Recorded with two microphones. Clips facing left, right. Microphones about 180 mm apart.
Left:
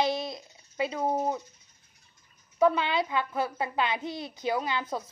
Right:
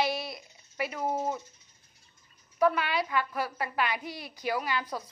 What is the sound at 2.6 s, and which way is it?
A woman's voice, 25° left (ahead or behind).